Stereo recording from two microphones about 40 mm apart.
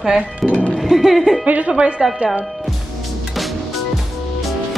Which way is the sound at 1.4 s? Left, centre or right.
Right.